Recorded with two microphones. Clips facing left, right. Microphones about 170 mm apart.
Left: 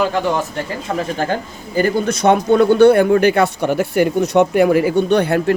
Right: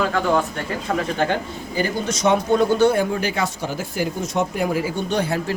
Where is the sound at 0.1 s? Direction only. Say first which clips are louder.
Left 1 dB; 30° left (ahead or behind).